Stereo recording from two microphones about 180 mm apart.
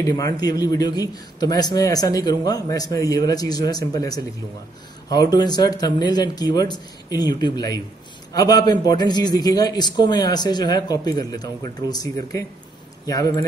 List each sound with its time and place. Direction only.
0.1 s a man's voice: 20° left (ahead or behind)